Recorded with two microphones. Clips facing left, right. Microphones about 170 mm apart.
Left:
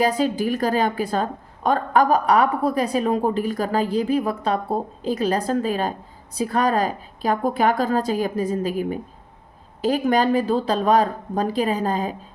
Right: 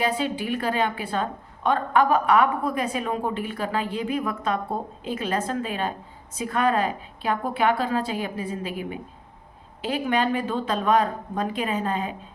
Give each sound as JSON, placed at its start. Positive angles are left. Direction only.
{"t": 0.0, "sound": "a woman's voice", "side_deg": 40}